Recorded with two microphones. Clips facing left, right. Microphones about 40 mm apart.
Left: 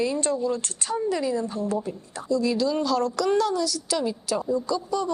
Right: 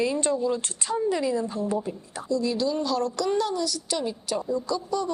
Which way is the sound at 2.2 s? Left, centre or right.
Centre.